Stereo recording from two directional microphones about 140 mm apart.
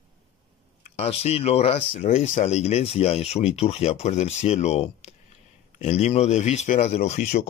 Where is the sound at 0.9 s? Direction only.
45° left (ahead or behind).